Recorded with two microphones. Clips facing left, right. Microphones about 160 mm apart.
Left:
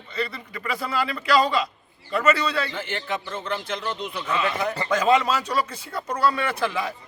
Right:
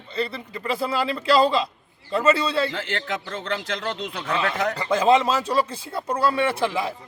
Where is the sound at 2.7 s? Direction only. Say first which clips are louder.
Right 1 dB; 90° right.